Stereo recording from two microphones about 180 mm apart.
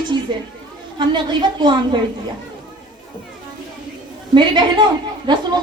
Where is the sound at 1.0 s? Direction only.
25° right (ahead or behind).